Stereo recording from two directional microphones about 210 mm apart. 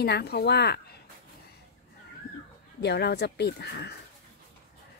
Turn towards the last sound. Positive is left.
turn(degrees=55)  # may be behind; listen again after turning